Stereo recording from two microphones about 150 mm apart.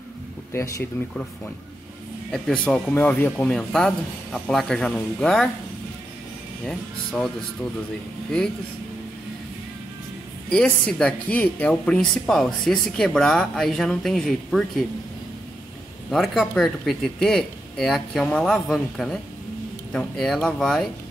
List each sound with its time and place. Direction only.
0.5 s speech: 15° left (ahead or behind)
2.3 s speech: 5° left (ahead or behind)
6.6 s speech: 5° left (ahead or behind)
10.5 s speech: 5° left (ahead or behind)
16.1 s speech: centre (ahead or behind)